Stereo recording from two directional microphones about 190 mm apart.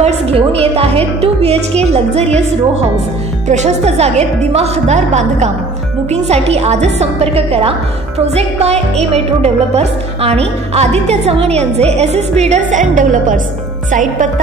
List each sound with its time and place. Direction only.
0.0 s speech: 30° right (ahead or behind)
3.4 s speech: 35° right (ahead or behind)